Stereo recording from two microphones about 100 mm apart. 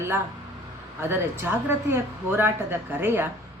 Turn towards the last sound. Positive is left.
turn(degrees=-20)  # may be behind; listen again after turning